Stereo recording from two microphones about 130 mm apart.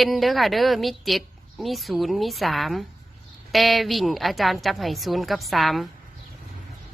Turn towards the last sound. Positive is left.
turn(degrees=0)  # may be behind; listen again after turning